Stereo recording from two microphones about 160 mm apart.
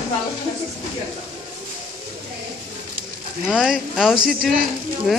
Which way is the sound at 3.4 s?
Centre (ahead or behind).